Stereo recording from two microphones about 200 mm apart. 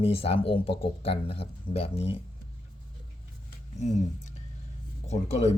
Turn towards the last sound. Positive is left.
turn(degrees=35)  # may be behind; listen again after turning